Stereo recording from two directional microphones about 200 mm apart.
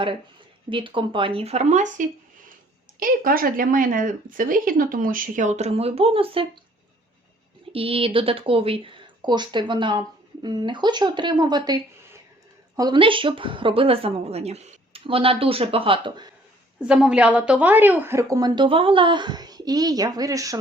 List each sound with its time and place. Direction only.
0.7 s speech: 25° right (ahead or behind)
7.7 s speech: 30° right (ahead or behind)
16.8 s a woman's voice: 5° right (ahead or behind)